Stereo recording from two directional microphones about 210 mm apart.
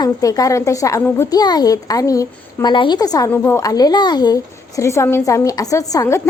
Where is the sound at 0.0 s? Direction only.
15° left (ahead or behind).